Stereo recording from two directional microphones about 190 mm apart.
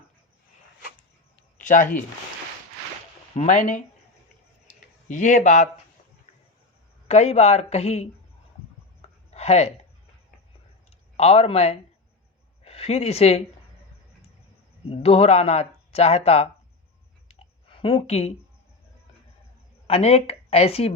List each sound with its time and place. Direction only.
1.5 s speech: 45° left (ahead or behind)
3.3 s speech: 40° left (ahead or behind)
5.0 s speech: 40° left (ahead or behind)
7.1 s speech: 35° left (ahead or behind)
9.0 s a sound: 35° left (ahead or behind)
11.2 s speech: 30° left (ahead or behind)
14.8 s speech: 30° left (ahead or behind)
17.2 s clicking: 30° left (ahead or behind)
19.9 s speech: 35° left (ahead or behind)